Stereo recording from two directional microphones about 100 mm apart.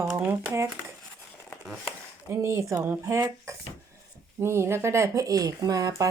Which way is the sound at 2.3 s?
30° right (ahead or behind).